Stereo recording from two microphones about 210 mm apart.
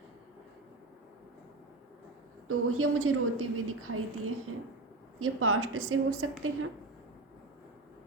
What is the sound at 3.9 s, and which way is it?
Speech, 90° right.